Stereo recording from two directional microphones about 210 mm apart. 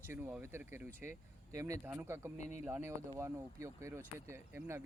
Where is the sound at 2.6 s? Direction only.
10° right (ahead or behind).